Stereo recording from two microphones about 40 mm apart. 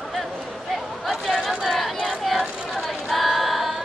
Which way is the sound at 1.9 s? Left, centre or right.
Right.